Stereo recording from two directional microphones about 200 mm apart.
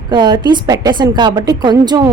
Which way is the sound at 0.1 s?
20° right (ahead or behind).